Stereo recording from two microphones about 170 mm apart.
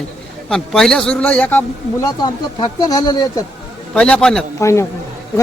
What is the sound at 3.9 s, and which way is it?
Speech, 5° left (ahead or behind).